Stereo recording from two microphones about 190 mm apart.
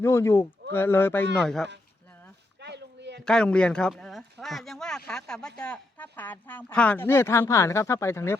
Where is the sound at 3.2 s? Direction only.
5° left (ahead or behind).